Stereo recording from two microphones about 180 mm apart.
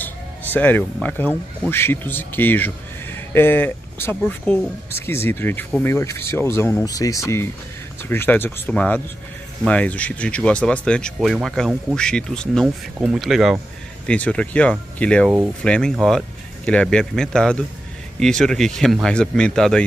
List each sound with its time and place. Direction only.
0.0 s music: 10° left (ahead or behind)
1.0 s speech: 10° left (ahead or behind)